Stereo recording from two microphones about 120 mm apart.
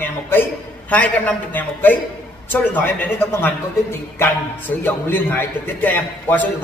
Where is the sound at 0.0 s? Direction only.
15° left (ahead or behind).